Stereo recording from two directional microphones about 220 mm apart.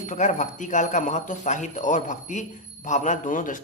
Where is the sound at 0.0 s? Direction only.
35° left (ahead or behind).